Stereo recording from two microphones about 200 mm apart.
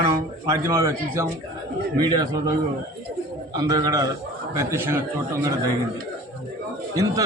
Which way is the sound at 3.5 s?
20° right (ahead or behind).